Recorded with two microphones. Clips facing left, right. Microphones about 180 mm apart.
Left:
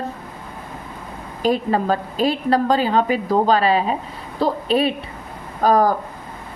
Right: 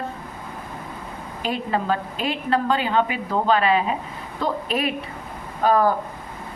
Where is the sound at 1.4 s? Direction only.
40° left (ahead or behind).